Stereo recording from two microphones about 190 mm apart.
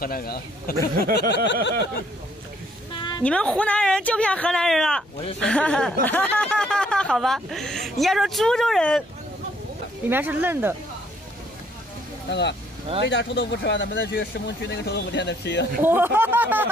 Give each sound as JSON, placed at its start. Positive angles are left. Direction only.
{"t": 0.0, "sound": "a man's voice", "side_deg": 50}
{"t": 1.3, "sound": "a sound", "side_deg": 70}
{"t": 3.0, "sound": "dog", "side_deg": 20}
{"t": 3.3, "sound": "speech", "side_deg": 5}
{"t": 10.0, "sound": "speech", "side_deg": -10}
{"t": 12.3, "sound": "speech", "side_deg": 65}
{"t": 15.8, "sound": "speech", "side_deg": -10}